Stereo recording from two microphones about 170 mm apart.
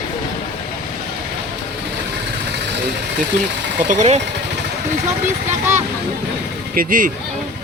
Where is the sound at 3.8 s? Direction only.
40° right (ahead or behind).